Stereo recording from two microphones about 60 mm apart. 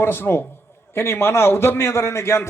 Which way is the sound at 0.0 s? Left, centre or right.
Left.